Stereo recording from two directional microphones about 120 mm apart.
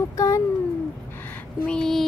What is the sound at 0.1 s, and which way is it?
Speech, 25° left (ahead or behind).